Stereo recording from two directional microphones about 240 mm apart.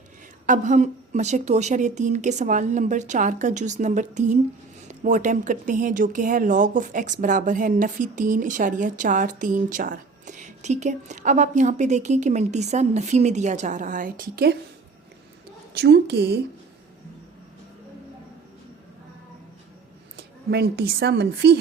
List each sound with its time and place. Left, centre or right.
0.4 s speech: right
15.8 s a woman's voice: right
20.1 s a woman's voice: right